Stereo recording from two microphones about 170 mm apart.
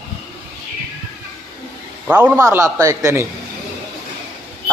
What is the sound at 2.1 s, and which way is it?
A man's voice, 10° right (ahead or behind).